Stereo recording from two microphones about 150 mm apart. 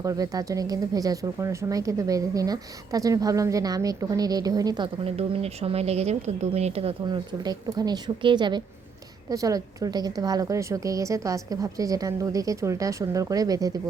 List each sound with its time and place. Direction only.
0.0 s speech: 25° right (ahead or behind)
5.0 s speech: 40° right (ahead or behind)
7.4 s speech: 25° right (ahead or behind)